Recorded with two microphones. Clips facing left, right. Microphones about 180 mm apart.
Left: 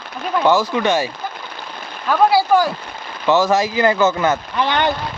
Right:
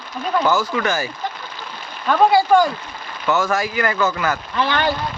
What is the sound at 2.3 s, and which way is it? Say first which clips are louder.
Speech: right 1 dB; 5° left (ahead or behind).